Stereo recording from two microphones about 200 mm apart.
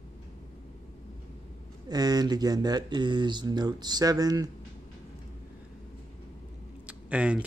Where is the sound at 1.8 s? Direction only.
20° right (ahead or behind).